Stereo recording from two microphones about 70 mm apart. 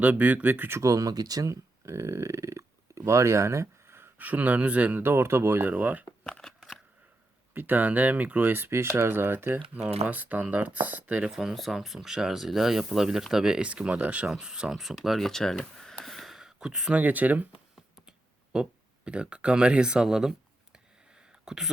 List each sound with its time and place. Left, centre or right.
0.0 s speech: right
0.8 s speech: right
4.2 s speech: right
6.2 s a sound: centre
7.5 s speech: right
11.3 s speech: centre
17.0 s speech: right
17.7 s a sound: centre
18.5 s speech: centre
21.4 s speech: centre